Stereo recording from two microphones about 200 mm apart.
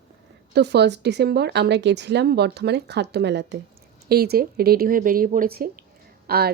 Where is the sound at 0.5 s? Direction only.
55° right (ahead or behind).